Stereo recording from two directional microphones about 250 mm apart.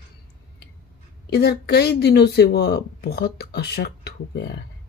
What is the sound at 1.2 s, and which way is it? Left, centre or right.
Speech, left.